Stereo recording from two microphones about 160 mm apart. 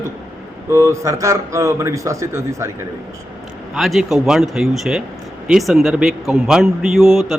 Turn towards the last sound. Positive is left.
turn(degrees=0)  # may be behind; listen again after turning